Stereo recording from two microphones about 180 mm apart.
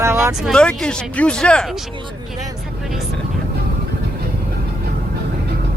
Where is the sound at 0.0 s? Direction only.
15° right (ahead or behind).